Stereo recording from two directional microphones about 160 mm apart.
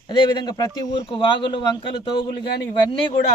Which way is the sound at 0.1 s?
30° left (ahead or behind).